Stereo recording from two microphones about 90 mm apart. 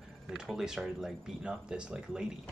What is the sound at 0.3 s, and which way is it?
Speech, 5° right (ahead or behind).